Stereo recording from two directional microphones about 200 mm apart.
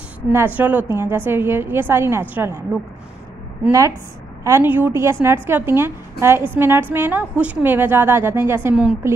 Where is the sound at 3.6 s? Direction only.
15° right (ahead or behind).